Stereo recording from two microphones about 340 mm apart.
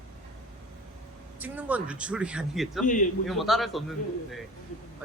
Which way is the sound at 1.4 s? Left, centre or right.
Centre.